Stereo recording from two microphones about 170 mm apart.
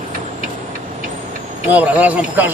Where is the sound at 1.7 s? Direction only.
10° right (ahead or behind).